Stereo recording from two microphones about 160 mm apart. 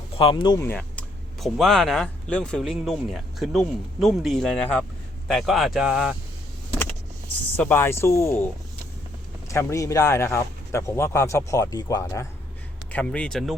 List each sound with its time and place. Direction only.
0.2 s speech: 30° left (ahead or behind)
0.6 s speech: 10° left (ahead or behind)
7.5 s speech: 10° left (ahead or behind)
9.5 s speech: 20° left (ahead or behind)
12.9 s speech: 10° left (ahead or behind)